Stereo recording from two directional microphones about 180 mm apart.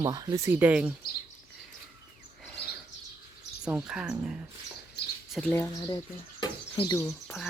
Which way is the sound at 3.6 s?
5° right (ahead or behind).